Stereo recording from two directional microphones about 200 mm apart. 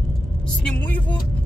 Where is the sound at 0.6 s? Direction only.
5° left (ahead or behind).